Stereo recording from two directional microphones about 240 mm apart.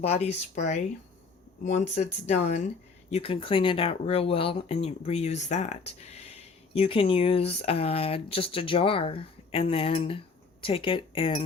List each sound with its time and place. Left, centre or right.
0.0 s speech: left